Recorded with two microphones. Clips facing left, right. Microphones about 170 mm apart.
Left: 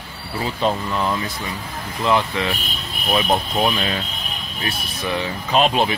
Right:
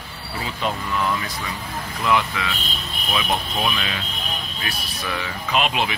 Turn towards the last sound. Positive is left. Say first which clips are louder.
# left 5 dB
turn(degrees=35)  # may be behind; listen again after turning